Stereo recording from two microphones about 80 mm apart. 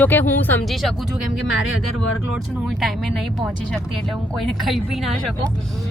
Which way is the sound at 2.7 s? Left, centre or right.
Centre.